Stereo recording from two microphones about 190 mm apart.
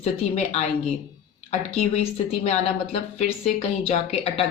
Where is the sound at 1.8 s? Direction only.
35° left (ahead or behind).